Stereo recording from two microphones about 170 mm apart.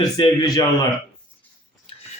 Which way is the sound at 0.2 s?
25° left (ahead or behind).